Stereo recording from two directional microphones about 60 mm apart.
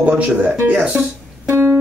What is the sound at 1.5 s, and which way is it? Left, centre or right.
Music, right.